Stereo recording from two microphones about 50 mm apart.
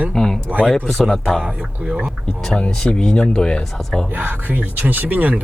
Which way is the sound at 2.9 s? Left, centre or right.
Centre.